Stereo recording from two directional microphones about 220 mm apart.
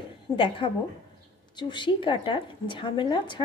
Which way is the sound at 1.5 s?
20° left (ahead or behind).